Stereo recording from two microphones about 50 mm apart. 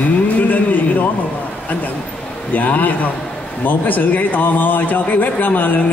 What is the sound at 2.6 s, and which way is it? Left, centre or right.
Speech, left.